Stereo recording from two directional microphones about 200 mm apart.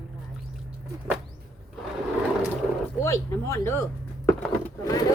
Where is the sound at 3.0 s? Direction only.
15° left (ahead or behind).